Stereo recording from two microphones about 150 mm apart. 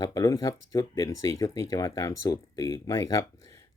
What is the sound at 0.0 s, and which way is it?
Speech, 25° left (ahead or behind).